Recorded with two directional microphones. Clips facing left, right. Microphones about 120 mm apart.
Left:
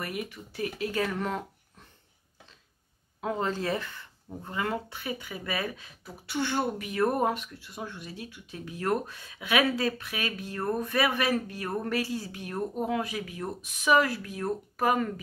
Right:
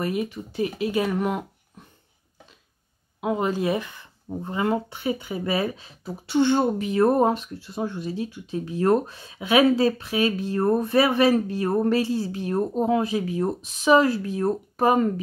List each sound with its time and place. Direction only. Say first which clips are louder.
0.0 s speech: right 9 dB; 25° right (ahead or behind)
3.2 s speech: right 6 dB; 15° right (ahead or behind)